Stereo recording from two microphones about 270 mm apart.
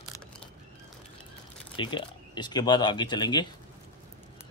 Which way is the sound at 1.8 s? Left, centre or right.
Centre.